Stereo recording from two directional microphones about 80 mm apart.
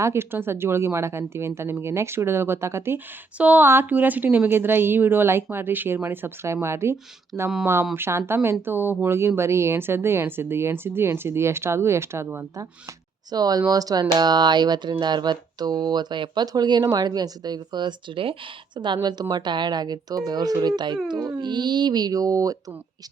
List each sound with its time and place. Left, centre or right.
0.0 s speech: right
3.3 s speech: centre
13.3 s speech: right
19.0 s speech: right